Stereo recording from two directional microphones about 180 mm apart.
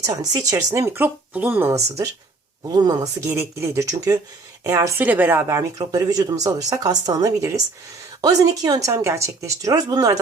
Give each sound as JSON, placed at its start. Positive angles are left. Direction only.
{"t": 0.0, "sound": "speech", "side_deg": -20}
{"t": 2.7, "sound": "speech", "side_deg": -20}